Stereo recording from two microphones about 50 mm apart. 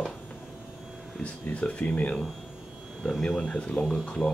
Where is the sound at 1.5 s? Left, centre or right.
Left.